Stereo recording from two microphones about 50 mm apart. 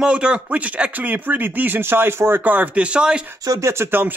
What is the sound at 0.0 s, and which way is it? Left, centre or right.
Speech, centre.